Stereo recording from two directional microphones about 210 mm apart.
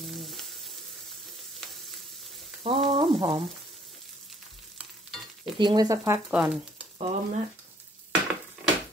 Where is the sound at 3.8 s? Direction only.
Centre (ahead or behind).